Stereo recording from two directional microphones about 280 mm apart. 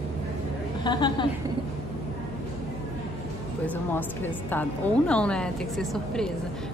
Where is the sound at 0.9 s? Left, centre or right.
Centre.